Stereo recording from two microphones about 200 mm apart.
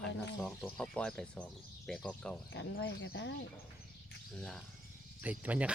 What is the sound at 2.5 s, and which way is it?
Speech, 60° left (ahead or behind).